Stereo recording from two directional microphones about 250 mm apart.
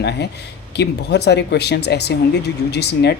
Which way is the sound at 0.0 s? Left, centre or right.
Left.